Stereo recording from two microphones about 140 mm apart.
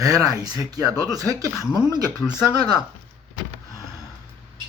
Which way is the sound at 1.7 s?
25° left (ahead or behind).